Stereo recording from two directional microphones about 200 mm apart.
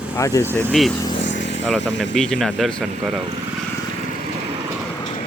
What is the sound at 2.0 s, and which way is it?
Speech, 5° left (ahead or behind).